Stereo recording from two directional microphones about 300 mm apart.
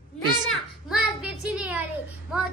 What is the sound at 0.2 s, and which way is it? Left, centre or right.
Children playing, centre.